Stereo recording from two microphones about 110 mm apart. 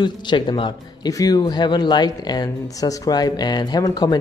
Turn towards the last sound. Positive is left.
turn(degrees=40)  # may be behind; listen again after turning